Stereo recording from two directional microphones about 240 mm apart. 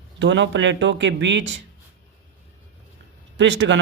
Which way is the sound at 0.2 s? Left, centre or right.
Right.